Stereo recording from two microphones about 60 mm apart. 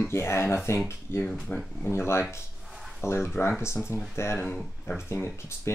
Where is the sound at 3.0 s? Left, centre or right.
Left.